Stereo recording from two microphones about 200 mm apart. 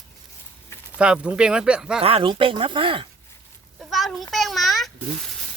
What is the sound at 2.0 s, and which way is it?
Speech, 25° right (ahead or behind).